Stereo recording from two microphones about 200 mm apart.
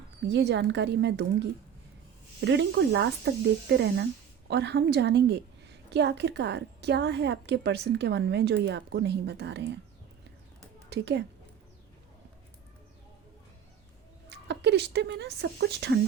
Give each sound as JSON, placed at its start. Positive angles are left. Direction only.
{"t": 0.3, "sound": "a woman's voice", "side_deg": -60}
{"t": 10.8, "sound": "a woman's voice", "side_deg": -60}
{"t": 14.3, "sound": "speech", "side_deg": -60}